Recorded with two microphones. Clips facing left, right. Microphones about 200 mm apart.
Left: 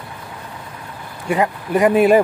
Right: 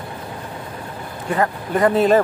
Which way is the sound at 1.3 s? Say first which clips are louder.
Left 2 dB; 15° left (ahead or behind).